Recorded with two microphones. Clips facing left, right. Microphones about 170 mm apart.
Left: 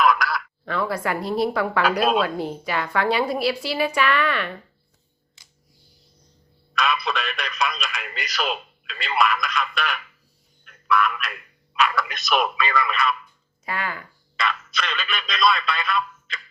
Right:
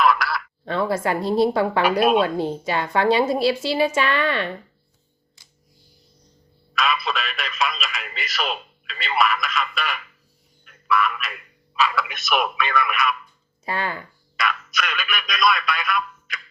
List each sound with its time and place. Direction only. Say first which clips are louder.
0.0 s a sound: even; 5° right (ahead or behind)
0.6 s a woman's voice: right 4 dB; 25° right (ahead or behind)
6.7 s radio: even; centre (ahead or behind)
10.7 s a sound: even; centre (ahead or behind)
12.4 s speech: right 1 dB; centre (ahead or behind)
13.7 s a woman's voice: right 3 dB; 30° right (ahead or behind)
14.4 s speech: right 1 dB; 10° right (ahead or behind)